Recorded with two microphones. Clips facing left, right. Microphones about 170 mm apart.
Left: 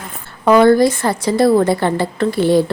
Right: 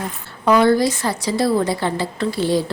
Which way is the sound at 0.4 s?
50° left (ahead or behind).